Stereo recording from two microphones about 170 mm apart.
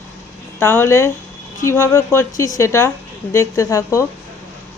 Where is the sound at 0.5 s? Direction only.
15° left (ahead or behind).